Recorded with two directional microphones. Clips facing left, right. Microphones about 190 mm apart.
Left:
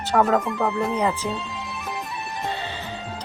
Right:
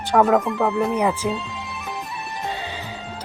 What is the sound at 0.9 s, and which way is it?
Speech, 10° right (ahead or behind).